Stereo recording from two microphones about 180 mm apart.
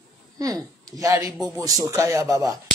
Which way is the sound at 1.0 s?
20° right (ahead or behind).